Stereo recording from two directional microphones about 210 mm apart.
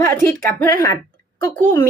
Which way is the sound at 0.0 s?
10° left (ahead or behind).